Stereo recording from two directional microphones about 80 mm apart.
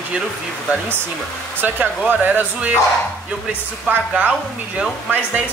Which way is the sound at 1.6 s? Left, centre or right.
Centre.